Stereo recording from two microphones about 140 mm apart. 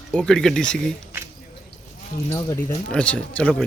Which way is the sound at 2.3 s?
25° left (ahead or behind).